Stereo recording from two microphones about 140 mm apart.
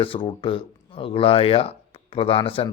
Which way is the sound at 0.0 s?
40° left (ahead or behind).